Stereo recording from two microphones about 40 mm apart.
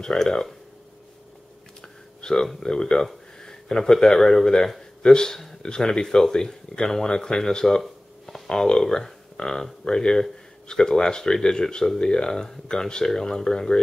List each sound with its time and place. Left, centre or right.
0.0 s speech: centre
2.2 s speech: left